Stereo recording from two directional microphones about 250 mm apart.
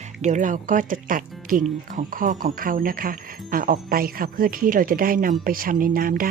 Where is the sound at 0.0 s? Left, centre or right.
Right.